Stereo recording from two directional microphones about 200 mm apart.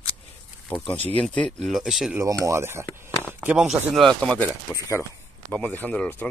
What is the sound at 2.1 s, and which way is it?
Speech, 15° right (ahead or behind).